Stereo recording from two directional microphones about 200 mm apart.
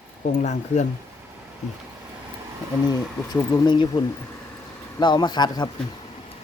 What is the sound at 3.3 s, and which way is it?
Speech, 20° left (ahead or behind).